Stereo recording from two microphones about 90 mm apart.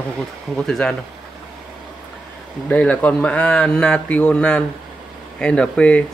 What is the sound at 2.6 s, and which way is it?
Speech, 10° left (ahead or behind).